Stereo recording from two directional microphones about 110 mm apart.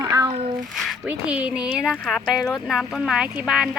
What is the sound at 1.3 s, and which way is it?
Speech, 10° right (ahead or behind).